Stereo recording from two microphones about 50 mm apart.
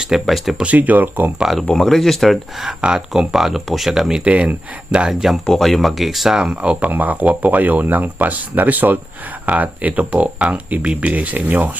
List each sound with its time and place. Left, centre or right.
0.3 s speech: centre
0.6 s speech: right
1.6 s speech: centre
4.2 s speech: right
5.0 s speech: centre
6.4 s speech: right